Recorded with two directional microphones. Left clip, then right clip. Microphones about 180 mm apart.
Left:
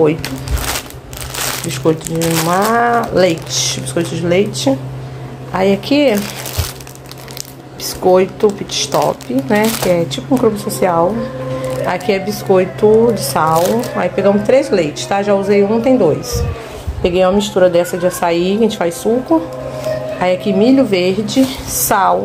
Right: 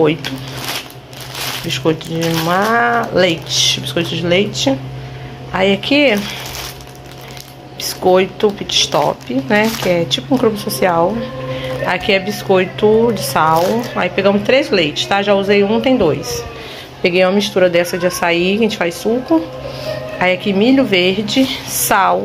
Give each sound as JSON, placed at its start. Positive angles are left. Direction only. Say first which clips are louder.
{"t": 1.7, "sound": "speech", "louder": "left 1 dB", "side_deg": 20}
{"t": 7.8, "sound": "speech", "louder": "left 1 dB", "side_deg": 15}